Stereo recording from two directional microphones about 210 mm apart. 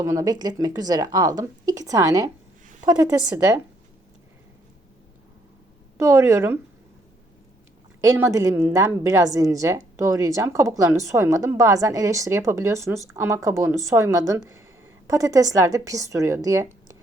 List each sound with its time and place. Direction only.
0.0 s a woman's voice: 15° right (ahead or behind)
6.0 s a woman's voice: 15° right (ahead or behind)
8.0 s a woman's voice: 15° right (ahead or behind)